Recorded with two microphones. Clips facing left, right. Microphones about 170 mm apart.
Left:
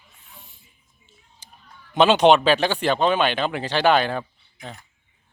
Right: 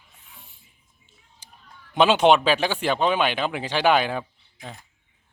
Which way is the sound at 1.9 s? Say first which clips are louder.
Left 2 dB; 5° right (ahead or behind).